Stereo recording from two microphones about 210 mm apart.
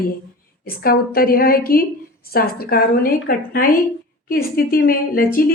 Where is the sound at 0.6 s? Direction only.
45° left (ahead or behind).